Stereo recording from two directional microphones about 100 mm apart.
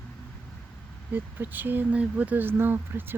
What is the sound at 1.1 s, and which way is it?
Speech, 20° right (ahead or behind).